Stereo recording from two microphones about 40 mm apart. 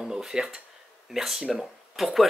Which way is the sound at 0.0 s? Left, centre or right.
Centre.